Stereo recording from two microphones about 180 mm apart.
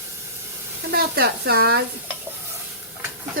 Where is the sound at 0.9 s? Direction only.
60° right (ahead or behind).